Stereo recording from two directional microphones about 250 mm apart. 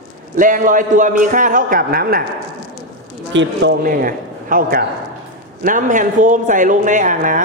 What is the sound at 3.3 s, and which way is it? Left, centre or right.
A man's voice, right.